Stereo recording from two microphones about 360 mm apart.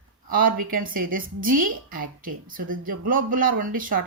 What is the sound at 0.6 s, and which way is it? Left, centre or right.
A woman's voice, right.